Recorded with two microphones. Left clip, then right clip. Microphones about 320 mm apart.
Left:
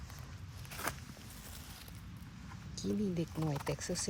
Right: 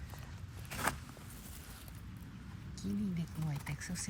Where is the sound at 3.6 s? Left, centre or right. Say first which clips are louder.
Left 6 dB; centre.